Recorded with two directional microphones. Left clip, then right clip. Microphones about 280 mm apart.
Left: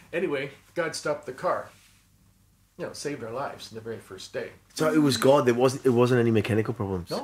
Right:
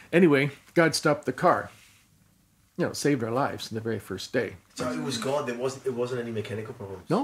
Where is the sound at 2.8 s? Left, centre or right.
Right.